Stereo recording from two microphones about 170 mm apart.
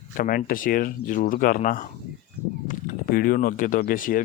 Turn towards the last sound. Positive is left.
turn(degrees=55)  # may be behind; listen again after turning